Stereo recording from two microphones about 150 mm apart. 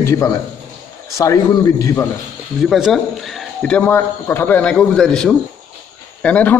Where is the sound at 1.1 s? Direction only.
20° left (ahead or behind).